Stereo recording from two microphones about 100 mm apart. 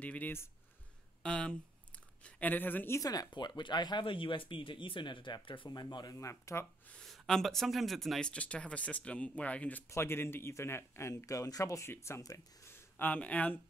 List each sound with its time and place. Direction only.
0.0 s speech: 15° left (ahead or behind)
3.0 s speech: 40° left (ahead or behind)
3.3 s speech: 50° left (ahead or behind)
6.1 s speech: 30° left (ahead or behind)
6.9 s speech: 5° left (ahead or behind)
9.8 s speech: 25° left (ahead or behind)